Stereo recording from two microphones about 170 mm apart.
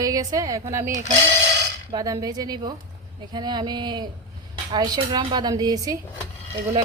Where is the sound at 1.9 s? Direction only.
20° right (ahead or behind).